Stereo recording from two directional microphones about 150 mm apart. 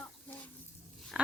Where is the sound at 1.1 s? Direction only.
10° right (ahead or behind).